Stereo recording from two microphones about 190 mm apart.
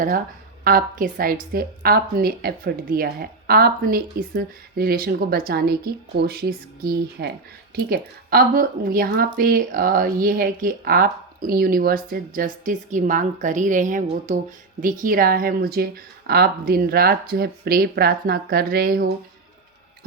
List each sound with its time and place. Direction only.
0.6 s a woman's voice: 50° right (ahead or behind)